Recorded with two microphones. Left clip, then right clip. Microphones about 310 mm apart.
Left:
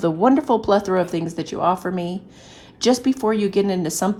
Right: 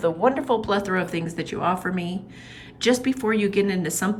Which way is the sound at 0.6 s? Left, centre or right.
Centre.